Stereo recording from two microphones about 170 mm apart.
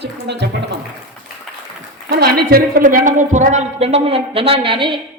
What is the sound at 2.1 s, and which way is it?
A woman's voice, 65° right (ahead or behind).